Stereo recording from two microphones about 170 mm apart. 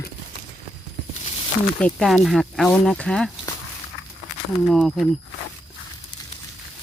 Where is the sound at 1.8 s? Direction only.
5° left (ahead or behind).